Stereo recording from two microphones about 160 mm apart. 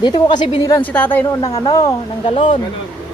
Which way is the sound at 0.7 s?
10° left (ahead or behind).